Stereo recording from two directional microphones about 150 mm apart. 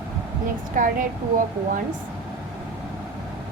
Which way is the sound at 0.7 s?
65° right (ahead or behind).